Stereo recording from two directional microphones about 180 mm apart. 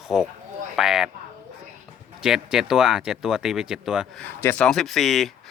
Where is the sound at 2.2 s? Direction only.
5° right (ahead or behind).